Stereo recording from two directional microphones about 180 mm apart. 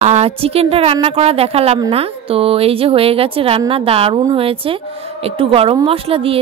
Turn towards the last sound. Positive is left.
turn(degrees=-30)  # may be behind; listen again after turning